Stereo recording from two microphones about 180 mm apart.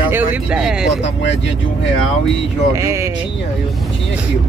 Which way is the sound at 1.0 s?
85° left.